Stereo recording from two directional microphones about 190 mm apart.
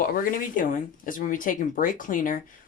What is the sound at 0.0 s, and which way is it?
Speech, 50° left (ahead or behind).